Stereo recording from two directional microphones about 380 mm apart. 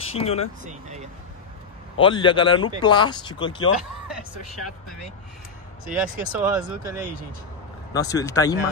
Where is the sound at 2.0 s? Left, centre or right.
Centre.